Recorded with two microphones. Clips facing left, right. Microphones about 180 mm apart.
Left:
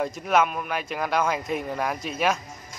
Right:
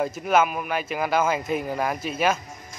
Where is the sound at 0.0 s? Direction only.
Centre (ahead or behind).